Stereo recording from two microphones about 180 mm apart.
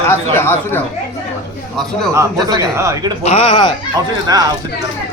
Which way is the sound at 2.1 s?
20° right (ahead or behind).